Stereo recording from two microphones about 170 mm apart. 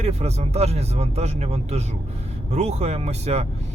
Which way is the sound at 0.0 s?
40° right (ahead or behind).